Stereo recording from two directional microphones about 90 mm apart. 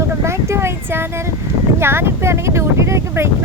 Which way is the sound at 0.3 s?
30° right (ahead or behind).